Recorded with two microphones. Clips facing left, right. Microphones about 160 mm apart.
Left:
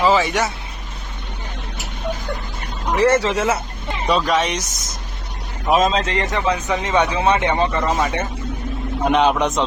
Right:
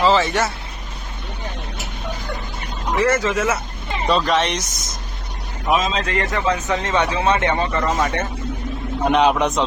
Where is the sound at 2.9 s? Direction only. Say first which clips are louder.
Left 2 dB; 30° left (ahead or behind).